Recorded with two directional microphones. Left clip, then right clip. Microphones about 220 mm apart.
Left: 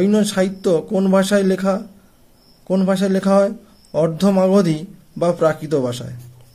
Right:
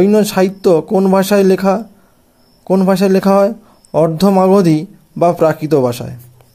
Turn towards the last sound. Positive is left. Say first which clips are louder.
# right 7 dB
turn(degrees=-30)  # may be behind; listen again after turning